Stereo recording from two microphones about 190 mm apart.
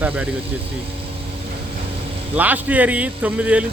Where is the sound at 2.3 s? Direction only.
10° right (ahead or behind).